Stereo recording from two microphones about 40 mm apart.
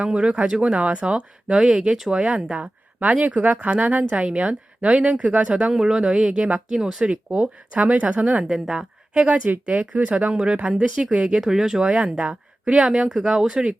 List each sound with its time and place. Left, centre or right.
0.0 s speech: right
0.7 s speech: right
3.2 s speech: right
4.3 s speech: right
5.7 s speech: centre; by 8.4 s right
8.5 s a woman's voice: centre
11.0 s speech: right
11.4 s speech: centre
12.2 s a sound: right
12.8 s speech: centre